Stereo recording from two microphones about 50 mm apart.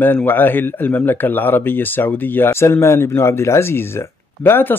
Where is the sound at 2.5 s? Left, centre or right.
Left.